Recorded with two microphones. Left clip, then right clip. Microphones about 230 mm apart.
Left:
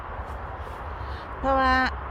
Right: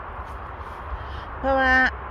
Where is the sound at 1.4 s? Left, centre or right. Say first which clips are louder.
Right 3 dB; centre.